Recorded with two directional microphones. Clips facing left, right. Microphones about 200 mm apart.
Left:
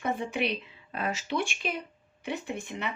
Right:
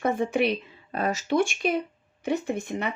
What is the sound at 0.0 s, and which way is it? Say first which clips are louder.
A woman's voice: right 6 dB; 45° right (ahead or behind).